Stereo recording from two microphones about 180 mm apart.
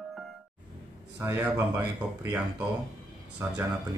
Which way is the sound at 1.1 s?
15° right (ahead or behind).